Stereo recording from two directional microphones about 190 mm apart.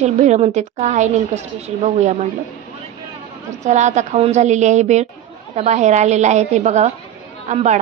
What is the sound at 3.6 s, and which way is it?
A woman's voice, 40° right (ahead or behind).